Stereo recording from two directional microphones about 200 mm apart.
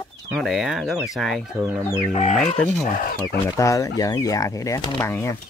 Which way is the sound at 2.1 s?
35° left (ahead or behind).